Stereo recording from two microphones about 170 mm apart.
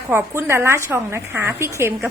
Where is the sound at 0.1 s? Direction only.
15° right (ahead or behind).